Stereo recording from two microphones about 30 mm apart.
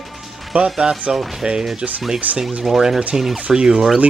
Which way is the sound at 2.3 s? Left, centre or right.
Right.